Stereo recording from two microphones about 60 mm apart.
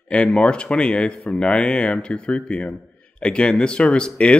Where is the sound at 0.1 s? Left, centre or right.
Centre.